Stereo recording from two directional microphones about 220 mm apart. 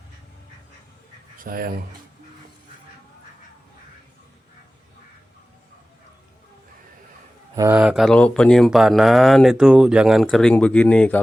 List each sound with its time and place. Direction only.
1.4 s speech: 40° right (ahead or behind)
7.5 s speech: 15° right (ahead or behind); by 11.2 s 5° left (ahead or behind)